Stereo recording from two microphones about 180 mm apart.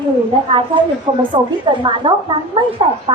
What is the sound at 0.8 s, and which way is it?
A woman's voice, 30° right (ahead or behind).